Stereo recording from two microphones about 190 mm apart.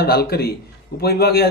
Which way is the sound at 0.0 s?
55° left (ahead or behind).